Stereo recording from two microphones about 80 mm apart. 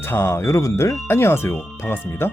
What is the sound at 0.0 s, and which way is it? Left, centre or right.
Speech, left.